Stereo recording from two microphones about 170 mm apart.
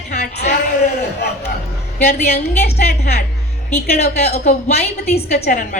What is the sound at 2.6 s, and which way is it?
Speech, 70° left (ahead or behind).